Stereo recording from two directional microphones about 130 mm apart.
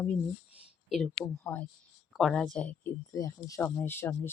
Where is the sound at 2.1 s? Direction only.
Centre (ahead or behind).